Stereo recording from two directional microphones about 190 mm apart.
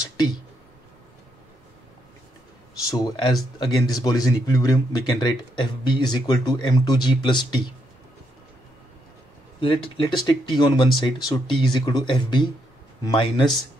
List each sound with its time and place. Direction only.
2.9 s speech: 20° left (ahead or behind)
9.6 s speech: 25° left (ahead or behind)